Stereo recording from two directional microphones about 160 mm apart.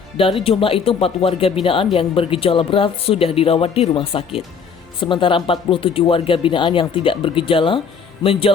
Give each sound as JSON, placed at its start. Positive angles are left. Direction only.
{"t": 0.2, "sound": "speech", "side_deg": 35}